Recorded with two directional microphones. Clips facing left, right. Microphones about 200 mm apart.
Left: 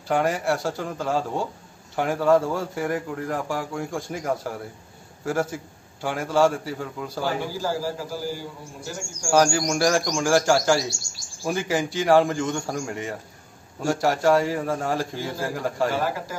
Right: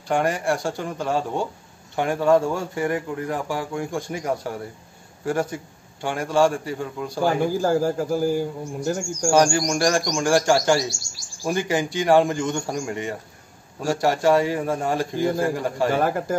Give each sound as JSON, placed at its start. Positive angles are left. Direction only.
{"t": 0.1, "sound": "a man's voice", "side_deg": 5}
{"t": 7.2, "sound": "speech", "side_deg": -50}
{"t": 9.3, "sound": "a man's voice", "side_deg": 0}
{"t": 15.2, "sound": "speech", "side_deg": -55}
{"t": 15.5, "sound": "a man's voice", "side_deg": 0}
{"t": 15.9, "sound": "speech", "side_deg": -55}